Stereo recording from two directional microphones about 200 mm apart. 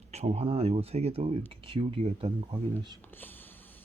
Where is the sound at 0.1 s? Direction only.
35° right (ahead or behind).